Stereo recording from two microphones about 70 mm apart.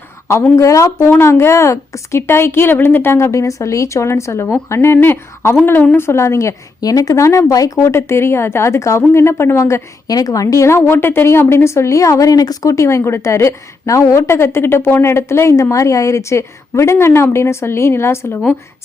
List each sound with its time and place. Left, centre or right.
0.5 s speech: left
1.2 s a woman's voice: left
6.8 s a woman's voice: left
10.1 s speech: left
10.8 s a woman's voice: left